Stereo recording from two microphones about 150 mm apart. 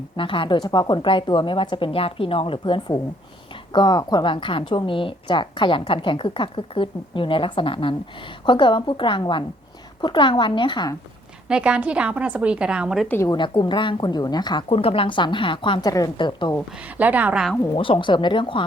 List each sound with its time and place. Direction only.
0.2 s a woman's voice: 35° left (ahead or behind)
11.4 s a woman's voice: 5° right (ahead or behind)
13.1 s a woman's voice: 15° left (ahead or behind)
13.3 s speech: 30° left (ahead or behind)
14.7 s a woman's voice: 40° left (ahead or behind)
17.0 s a woman's voice: 10° right (ahead or behind)
17.7 s a woman's voice: 35° left (ahead or behind)